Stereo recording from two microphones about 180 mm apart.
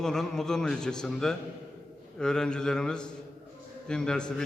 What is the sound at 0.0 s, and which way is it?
A man's voice, centre (ahead or behind).